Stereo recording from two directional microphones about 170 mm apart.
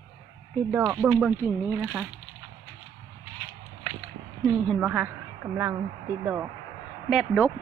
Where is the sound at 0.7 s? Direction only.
10° right (ahead or behind).